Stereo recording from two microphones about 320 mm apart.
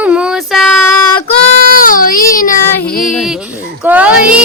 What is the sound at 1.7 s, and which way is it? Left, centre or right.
Child singing, left.